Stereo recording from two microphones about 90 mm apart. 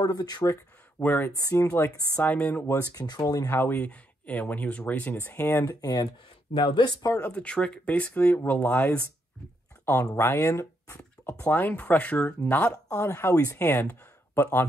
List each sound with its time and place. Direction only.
0.0 s speech: 50° left (ahead or behind)
0.5 s a sound: 30° left (ahead or behind)
1.8 s speech: 25° left (ahead or behind)
2.3 s speech: 15° left (ahead or behind)
2.8 s speech: 45° left (ahead or behind)
3.4 s speech: 25° left (ahead or behind)
5.8 s speech: 50° left (ahead or behind)
6.5 s speech: 60° left (ahead or behind)
7.2 s speech: 15° left (ahead or behind)
10.1 s speech: 30° left (ahead or behind)
11.0 s speech: 20° left (ahead or behind)
12.8 s speech: 35° left (ahead or behind)
13.6 s speech: 25° left (ahead or behind)